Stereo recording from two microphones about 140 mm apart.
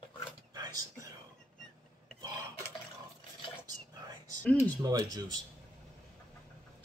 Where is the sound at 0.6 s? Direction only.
25° right (ahead or behind).